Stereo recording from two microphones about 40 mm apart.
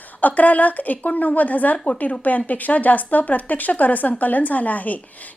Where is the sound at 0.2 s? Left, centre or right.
Left.